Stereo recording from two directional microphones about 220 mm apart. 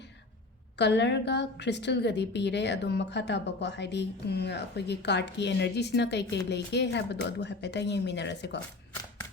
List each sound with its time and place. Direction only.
0.8 s a woman's voice: 50° left (ahead or behind)